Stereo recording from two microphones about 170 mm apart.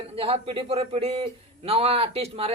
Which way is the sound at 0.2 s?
35° right (ahead or behind).